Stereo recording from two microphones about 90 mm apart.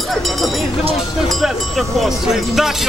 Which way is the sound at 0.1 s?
Centre (ahead or behind).